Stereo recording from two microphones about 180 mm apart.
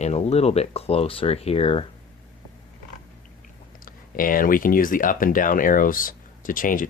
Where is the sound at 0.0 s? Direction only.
35° left (ahead or behind).